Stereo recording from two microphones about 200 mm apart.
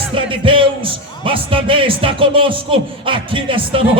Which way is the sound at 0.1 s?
25° right (ahead or behind).